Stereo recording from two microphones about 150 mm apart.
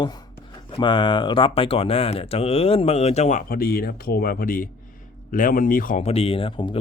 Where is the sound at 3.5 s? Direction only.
85° left; by 6.0 s 65° left (ahead or behind).